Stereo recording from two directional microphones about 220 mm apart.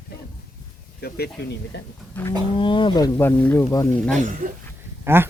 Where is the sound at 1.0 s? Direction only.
45° left (ahead or behind).